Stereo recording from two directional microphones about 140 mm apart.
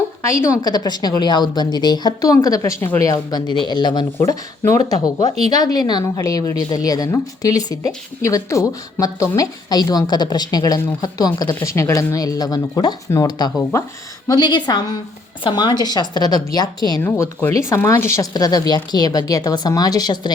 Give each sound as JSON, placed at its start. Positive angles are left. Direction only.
{"t": 0.4, "sound": "a woman's voice", "side_deg": 25}
{"t": 17.0, "sound": "a woman's voice", "side_deg": 15}